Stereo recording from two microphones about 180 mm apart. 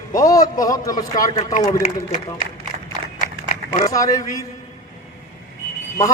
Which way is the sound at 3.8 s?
20° left (ahead or behind).